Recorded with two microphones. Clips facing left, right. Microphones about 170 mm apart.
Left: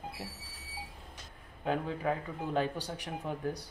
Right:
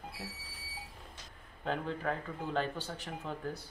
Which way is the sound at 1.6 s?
10° left (ahead or behind).